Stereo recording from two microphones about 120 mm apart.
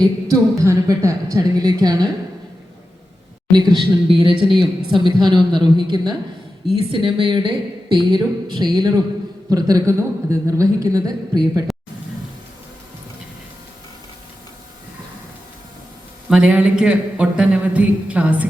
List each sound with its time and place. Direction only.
0.0 s a man's voice: 25° right (ahead or behind)
3.5 s a woman's voice: 35° right (ahead or behind)
16.3 s speech: 10° right (ahead or behind)